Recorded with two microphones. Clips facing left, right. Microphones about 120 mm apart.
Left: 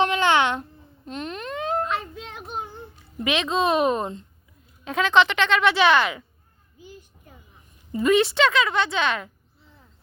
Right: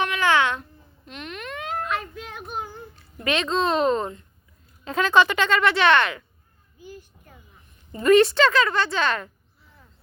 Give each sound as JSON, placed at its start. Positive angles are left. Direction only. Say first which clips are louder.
{"t": 0.0, "sound": "a child's voice", "louder": "left 2 dB", "side_deg": 25}
{"t": 1.0, "sound": "a sound", "louder": "left 4 dB", "side_deg": 35}
{"t": 2.5, "sound": "child singing", "louder": "even", "side_deg": 25}
{"t": 3.2, "sound": "speech", "louder": "left 1 dB", "side_deg": 5}
{"t": 4.9, "sound": "a woman's voice", "louder": "even", "side_deg": 0}
{"t": 5.1, "sound": "speech", "louder": "even", "side_deg": -10}
{"t": 5.5, "sound": "speech", "louder": "even", "side_deg": 5}
{"t": 6.7, "sound": "a sound", "louder": "right 3 dB", "side_deg": 20}
{"t": 8.0, "sound": "a woman's voice", "louder": "right 3 dB", "side_deg": 0}